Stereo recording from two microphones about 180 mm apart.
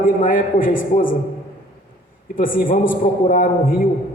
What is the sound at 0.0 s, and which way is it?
A man's voice, 50° left (ahead or behind).